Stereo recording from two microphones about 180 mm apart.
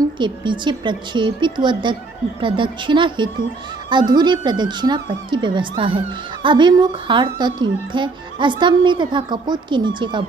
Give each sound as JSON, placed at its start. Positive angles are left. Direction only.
{"t": 0.2, "sound": "speech", "side_deg": -25}